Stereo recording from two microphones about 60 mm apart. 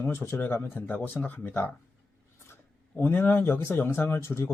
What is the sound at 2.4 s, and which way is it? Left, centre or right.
Speech, left.